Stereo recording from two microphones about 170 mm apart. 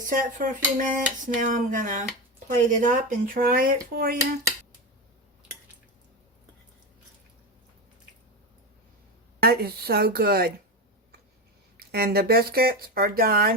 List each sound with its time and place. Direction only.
0.0 s speech: 50° right (ahead or behind)
9.4 s speech: 65° right (ahead or behind)
11.8 s speech: 65° right (ahead or behind)